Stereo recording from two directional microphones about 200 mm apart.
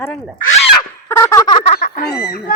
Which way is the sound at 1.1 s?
15° left (ahead or behind).